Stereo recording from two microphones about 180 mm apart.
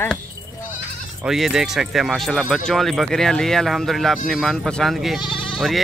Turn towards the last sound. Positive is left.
turn(degrees=0)  # may be behind; listen again after turning